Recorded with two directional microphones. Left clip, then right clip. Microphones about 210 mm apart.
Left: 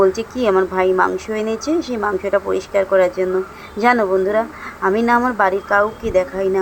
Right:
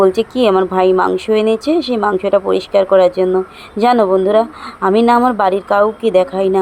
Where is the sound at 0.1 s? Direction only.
5° right (ahead or behind).